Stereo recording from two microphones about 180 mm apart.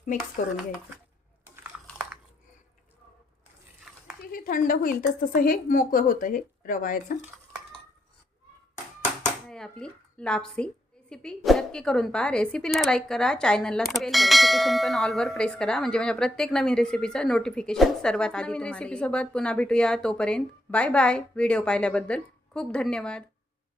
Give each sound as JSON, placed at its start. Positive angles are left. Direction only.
{"t": 1.6, "sound": "biting", "side_deg": -5}
{"t": 3.8, "sound": "a sound", "side_deg": -5}
{"t": 4.3, "sound": "a woman's voice", "side_deg": 50}
{"t": 9.5, "sound": "speech", "side_deg": 5}